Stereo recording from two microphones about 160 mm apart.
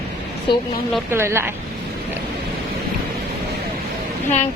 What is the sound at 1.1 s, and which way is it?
Speech, 15° right (ahead or behind).